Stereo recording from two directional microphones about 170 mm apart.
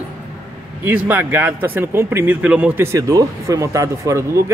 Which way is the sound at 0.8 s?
10° right (ahead or behind).